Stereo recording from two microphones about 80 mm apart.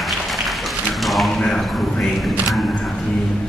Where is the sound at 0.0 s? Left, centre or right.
Centre.